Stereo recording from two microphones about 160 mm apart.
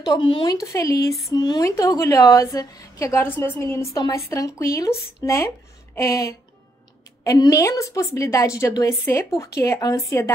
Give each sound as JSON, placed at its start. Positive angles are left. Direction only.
{"t": 0.0, "sound": "a woman's voice", "side_deg": 25}